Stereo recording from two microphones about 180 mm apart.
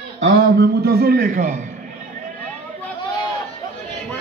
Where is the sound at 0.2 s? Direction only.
70° right (ahead or behind); by 1.6 s 45° right (ahead or behind).